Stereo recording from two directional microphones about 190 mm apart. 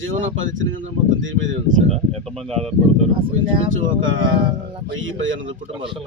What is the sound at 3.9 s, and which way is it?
Speech, 90° right.